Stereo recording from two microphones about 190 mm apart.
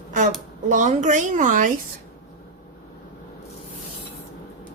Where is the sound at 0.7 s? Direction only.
40° right (ahead or behind).